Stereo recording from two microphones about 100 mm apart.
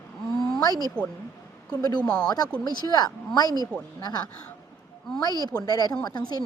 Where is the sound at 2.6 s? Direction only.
40° left (ahead or behind).